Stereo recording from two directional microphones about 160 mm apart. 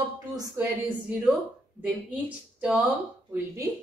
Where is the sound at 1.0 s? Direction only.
5° right (ahead or behind).